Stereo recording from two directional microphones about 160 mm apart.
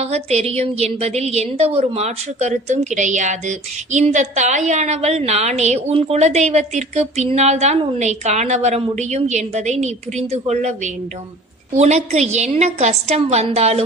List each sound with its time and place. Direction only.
0.0 s a woman's voice: 40° right (ahead or behind)